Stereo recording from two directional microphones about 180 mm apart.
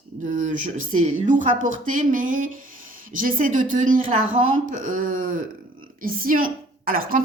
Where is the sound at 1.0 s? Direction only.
45° right (ahead or behind).